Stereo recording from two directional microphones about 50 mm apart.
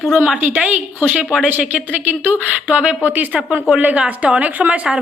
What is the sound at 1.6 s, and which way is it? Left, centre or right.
A woman's voice, right.